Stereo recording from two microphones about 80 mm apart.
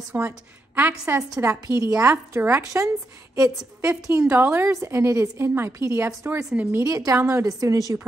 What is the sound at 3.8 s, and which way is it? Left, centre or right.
A woman's voice, right.